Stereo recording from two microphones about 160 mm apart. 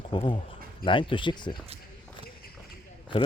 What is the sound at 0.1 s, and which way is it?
Speech, 30° left (ahead or behind).